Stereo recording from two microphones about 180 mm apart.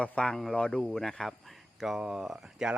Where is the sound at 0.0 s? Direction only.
5° left (ahead or behind).